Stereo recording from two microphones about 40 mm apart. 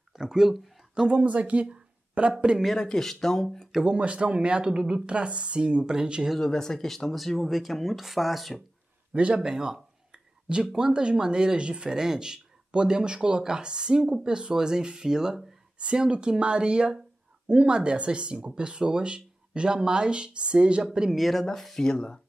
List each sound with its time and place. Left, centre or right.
0.1 s a sound: centre
1.0 s speech: right
2.8 s speech: centre
3.8 s speech: right
6.4 s speech: centre
9.1 s speech: right
9.4 s speech: centre
16.0 s speech: right
21.1 s speech: centre